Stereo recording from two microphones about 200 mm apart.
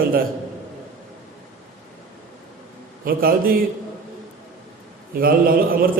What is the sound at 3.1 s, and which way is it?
Speech, 45° right (ahead or behind).